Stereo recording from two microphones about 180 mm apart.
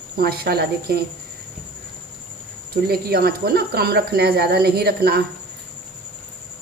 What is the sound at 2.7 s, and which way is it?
Speech, 60° right (ahead or behind).